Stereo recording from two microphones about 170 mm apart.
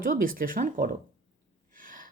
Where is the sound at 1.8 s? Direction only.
55° right (ahead or behind).